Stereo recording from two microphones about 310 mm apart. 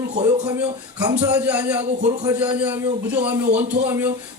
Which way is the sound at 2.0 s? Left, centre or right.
Centre.